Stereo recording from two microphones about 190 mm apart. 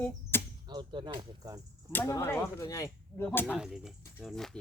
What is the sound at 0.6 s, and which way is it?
Speech, 25° right (ahead or behind).